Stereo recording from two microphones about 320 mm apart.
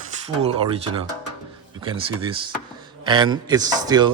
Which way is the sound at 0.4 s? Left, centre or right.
Centre.